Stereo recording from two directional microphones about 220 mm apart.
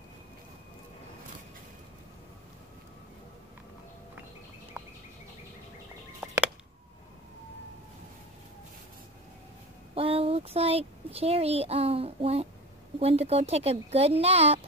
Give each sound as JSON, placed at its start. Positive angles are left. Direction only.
{"t": 9.9, "sound": "speech", "side_deg": -25}